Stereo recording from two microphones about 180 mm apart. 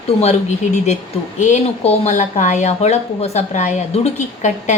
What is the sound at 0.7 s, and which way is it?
A woman's voice, 40° left (ahead or behind).